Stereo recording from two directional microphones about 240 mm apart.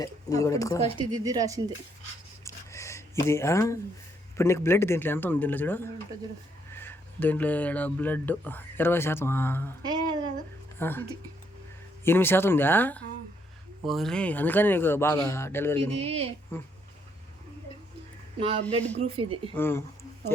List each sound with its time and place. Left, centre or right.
0.0 s speech: centre
0.9 s speech: centre
2.4 s a sound: centre
4.4 s speech: centre
10.8 s a woman's voice: centre
12.0 s speech: centre
16.0 s speech: right
18.3 s speech: right
19.5 s a sound: centre